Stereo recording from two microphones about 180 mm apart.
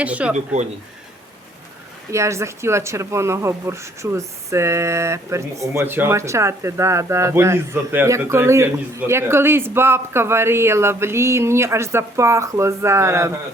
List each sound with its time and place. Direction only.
0.0 s speech: 5° right (ahead or behind)
2.1 s speech: 15° right (ahead or behind)